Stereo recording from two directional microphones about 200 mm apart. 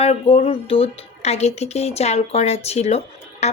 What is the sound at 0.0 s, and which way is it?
A woman's voice, 30° left (ahead or behind).